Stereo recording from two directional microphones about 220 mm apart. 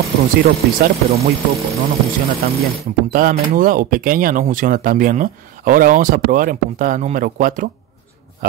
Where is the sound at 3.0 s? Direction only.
40° right (ahead or behind).